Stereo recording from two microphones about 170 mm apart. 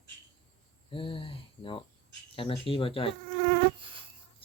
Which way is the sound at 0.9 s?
30° left (ahead or behind).